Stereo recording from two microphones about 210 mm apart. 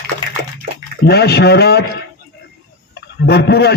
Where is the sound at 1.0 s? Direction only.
50° left (ahead or behind).